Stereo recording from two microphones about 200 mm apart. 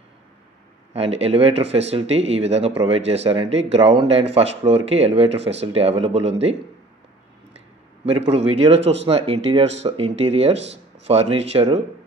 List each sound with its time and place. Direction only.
0.9 s speech: 30° right (ahead or behind)
8.3 s speech: 30° right (ahead or behind)